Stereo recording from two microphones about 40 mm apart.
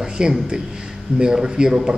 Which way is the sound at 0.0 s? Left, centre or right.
Centre.